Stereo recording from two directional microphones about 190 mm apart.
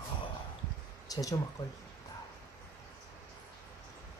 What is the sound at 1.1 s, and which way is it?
Speech, 20° left (ahead or behind).